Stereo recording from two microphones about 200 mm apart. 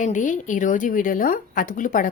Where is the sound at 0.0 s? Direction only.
40° left (ahead or behind).